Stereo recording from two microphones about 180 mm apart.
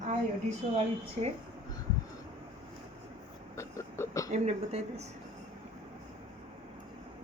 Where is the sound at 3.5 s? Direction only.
15° left (ahead or behind).